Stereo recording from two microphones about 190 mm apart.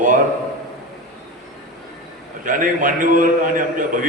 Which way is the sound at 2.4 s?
45° right (ahead or behind).